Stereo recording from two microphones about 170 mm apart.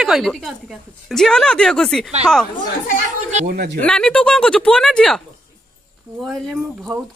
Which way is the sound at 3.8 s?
5° left (ahead or behind).